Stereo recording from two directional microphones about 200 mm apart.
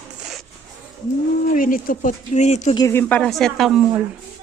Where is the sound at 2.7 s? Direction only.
15° left (ahead or behind); by 4.0 s 5° right (ahead or behind).